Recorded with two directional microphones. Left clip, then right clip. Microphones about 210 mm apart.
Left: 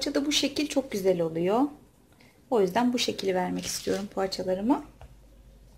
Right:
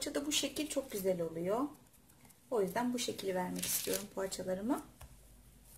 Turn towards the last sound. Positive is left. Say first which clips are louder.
# left 10 dB
turn(degrees=20)  # may be behind; listen again after turning